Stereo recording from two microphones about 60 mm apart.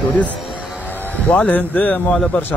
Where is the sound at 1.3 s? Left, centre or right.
Left.